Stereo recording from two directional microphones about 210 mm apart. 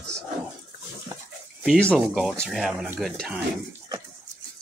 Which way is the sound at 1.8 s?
5° left (ahead or behind).